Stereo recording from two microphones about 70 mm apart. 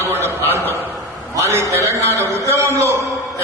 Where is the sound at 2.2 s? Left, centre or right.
Right.